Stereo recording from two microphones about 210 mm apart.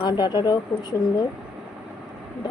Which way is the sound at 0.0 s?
20° left (ahead or behind).